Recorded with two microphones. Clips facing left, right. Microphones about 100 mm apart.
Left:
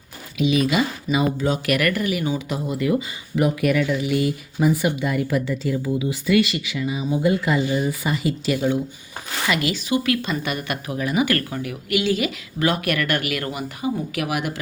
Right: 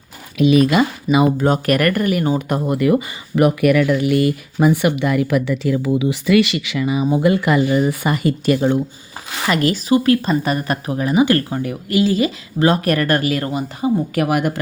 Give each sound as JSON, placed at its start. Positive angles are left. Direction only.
{"t": 0.3, "sound": "speech", "side_deg": -50}
{"t": 14.2, "sound": "speech", "side_deg": -45}